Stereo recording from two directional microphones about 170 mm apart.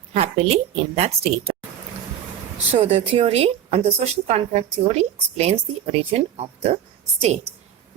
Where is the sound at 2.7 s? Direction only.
35° right (ahead or behind).